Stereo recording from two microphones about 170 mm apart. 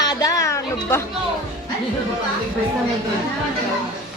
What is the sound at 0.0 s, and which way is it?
Music, 20° left (ahead or behind).